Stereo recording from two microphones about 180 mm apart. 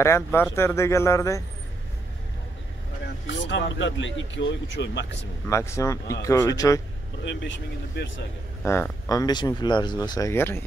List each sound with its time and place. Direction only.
0.0 s speech: 15° left (ahead or behind)
3.3 s speech: 90° left
5.5 s speech: 15° left (ahead or behind)
7.2 s speech: 90° left
8.6 s speech: 10° left (ahead or behind)
9.1 s speech: 20° left (ahead or behind)